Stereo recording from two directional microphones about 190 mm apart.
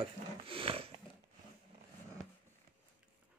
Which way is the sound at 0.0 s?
30° right (ahead or behind).